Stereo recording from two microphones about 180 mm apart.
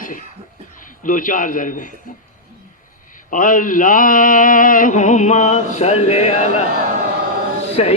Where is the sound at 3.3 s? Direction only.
50° left (ahead or behind).